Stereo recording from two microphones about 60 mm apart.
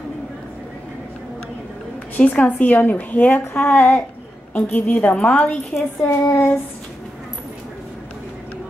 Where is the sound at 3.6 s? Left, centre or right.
Left.